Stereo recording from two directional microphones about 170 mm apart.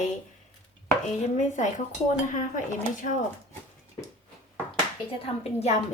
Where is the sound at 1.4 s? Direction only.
45° left (ahead or behind).